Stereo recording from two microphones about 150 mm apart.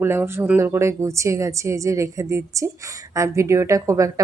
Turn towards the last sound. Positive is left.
turn(degrees=-20)  # may be behind; listen again after turning